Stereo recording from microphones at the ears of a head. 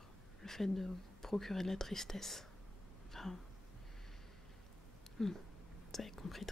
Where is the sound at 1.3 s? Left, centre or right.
Centre.